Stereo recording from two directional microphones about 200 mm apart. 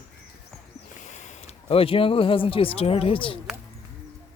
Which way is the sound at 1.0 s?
35° left (ahead or behind).